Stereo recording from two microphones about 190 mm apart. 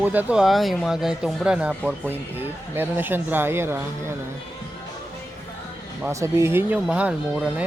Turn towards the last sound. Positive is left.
turn(degrees=-5)  # may be behind; listen again after turning